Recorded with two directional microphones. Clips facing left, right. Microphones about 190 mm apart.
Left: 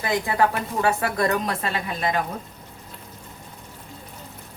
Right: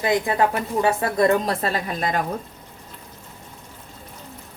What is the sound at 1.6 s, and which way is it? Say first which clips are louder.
Speech: right 2 dB; 40° right (ahead or behind).